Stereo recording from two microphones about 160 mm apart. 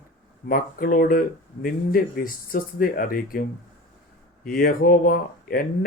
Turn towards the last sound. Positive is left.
turn(degrees=65)  # may be behind; listen again after turning